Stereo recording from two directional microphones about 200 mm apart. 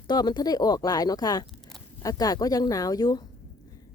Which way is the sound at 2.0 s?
15° left (ahead or behind).